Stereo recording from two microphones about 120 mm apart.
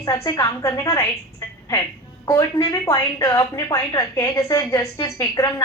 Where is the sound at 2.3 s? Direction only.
25° left (ahead or behind).